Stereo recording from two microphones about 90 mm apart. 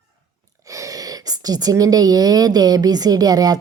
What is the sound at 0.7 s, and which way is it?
A woman's voice, 40° right (ahead or behind).